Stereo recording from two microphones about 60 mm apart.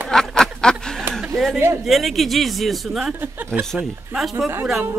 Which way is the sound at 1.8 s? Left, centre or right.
Centre.